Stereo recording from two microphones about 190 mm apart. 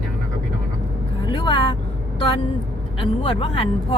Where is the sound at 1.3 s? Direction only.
25° left (ahead or behind).